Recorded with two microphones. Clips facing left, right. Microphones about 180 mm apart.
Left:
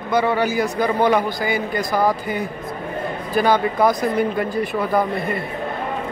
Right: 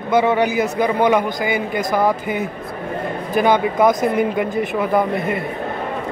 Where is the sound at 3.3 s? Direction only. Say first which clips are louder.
Right 2 dB; 20° right (ahead or behind).